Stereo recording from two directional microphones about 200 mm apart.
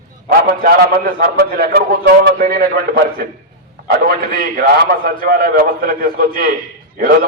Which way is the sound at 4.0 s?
45° right (ahead or behind).